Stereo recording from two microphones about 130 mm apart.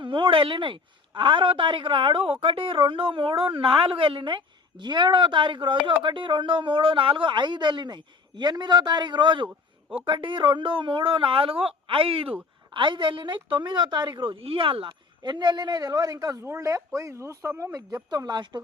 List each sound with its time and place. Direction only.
0.0 s a man's voice: 40° right (ahead or behind)